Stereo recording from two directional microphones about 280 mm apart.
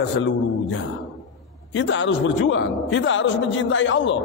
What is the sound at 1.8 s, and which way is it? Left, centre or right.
A man's voice, left.